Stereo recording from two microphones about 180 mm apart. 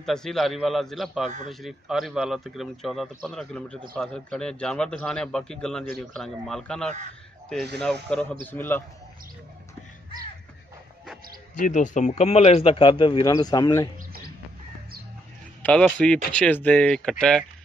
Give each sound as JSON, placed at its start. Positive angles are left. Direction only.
{"t": 0.0, "sound": "a man's voice", "side_deg": 0}
{"t": 11.5, "sound": "speech", "side_deg": 45}
{"t": 13.9, "sound": "bird", "side_deg": -55}
{"t": 15.6, "sound": "speech", "side_deg": 5}